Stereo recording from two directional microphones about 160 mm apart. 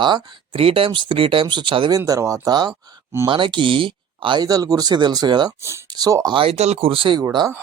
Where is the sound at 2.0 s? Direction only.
20° right (ahead or behind).